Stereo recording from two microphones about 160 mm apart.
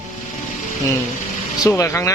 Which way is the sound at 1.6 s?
20° left (ahead or behind).